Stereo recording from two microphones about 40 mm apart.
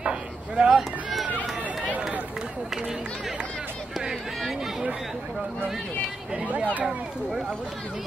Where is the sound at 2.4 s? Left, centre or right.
Centre.